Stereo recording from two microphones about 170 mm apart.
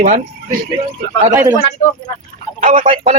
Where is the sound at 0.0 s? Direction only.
45° right (ahead or behind).